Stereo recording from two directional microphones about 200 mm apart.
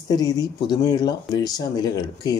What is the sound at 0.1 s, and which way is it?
Speech, 20° left (ahead or behind).